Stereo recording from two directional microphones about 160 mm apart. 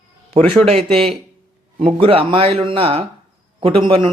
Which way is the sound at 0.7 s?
35° right (ahead or behind).